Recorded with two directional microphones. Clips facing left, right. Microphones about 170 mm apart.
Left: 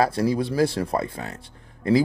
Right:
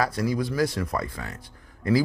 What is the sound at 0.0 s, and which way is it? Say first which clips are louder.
Speech: left 4 dB; 30° left (ahead or behind).